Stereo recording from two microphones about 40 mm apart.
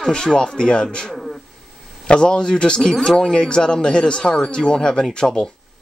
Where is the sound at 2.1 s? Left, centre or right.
Centre.